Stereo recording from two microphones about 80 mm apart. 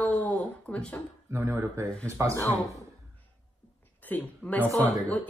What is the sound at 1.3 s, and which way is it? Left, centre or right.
Speech, right.